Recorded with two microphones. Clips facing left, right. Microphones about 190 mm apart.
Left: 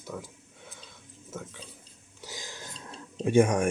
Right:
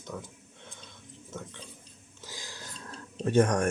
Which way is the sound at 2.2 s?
15° left (ahead or behind).